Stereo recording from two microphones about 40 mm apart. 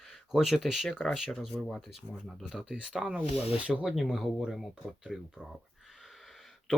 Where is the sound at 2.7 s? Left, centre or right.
Centre.